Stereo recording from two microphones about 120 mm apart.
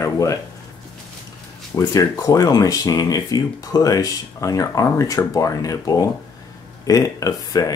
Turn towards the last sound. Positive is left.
turn(degrees=30)  # may be behind; listen again after turning